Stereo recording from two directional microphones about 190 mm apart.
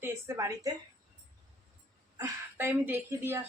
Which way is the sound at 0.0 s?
15° right (ahead or behind).